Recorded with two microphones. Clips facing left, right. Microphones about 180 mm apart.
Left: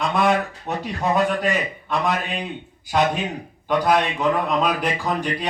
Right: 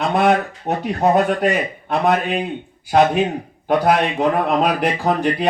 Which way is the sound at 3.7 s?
55° right (ahead or behind).